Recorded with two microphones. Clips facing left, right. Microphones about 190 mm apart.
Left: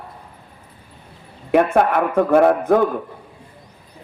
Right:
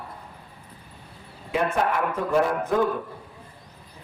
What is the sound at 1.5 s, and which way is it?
A man's voice, 60° left (ahead or behind).